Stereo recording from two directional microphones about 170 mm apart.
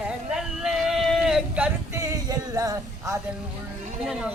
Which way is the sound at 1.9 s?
20° right (ahead or behind).